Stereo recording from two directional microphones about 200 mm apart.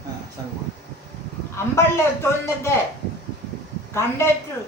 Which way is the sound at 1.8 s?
10° left (ahead or behind).